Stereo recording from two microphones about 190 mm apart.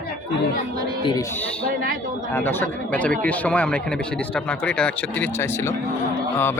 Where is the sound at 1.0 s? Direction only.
20° left (ahead or behind).